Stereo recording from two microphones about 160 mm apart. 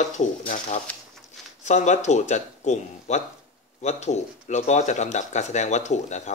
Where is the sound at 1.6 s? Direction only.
50° left (ahead or behind).